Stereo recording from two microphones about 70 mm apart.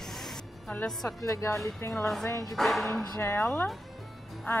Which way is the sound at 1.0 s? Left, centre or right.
Left.